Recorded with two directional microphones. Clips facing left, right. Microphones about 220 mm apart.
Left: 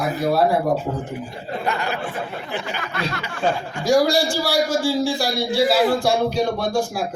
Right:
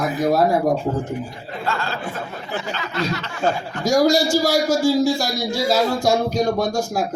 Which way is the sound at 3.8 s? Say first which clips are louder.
Right 1 dB; 45° right (ahead or behind).